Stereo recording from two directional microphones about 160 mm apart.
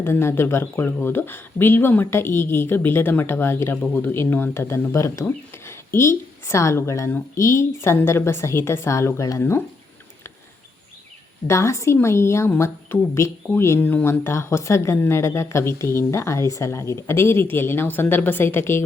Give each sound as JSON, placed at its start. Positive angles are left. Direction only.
{"t": 0.0, "sound": "speech", "side_deg": 15}
{"t": 11.4, "sound": "speech", "side_deg": 20}